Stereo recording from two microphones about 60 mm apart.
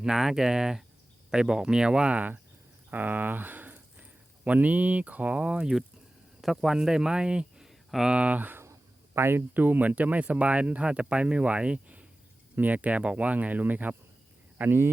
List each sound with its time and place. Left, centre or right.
0.0 s speech: centre
2.9 s speech: right; by 8.0 s centre
8.0 s speech: right
8.6 s a sound: right
9.6 s speech: right
14.6 s speech: right